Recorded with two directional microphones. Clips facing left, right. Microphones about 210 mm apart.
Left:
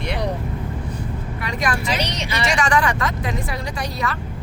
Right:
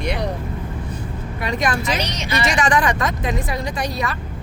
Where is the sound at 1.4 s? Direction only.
20° right (ahead or behind).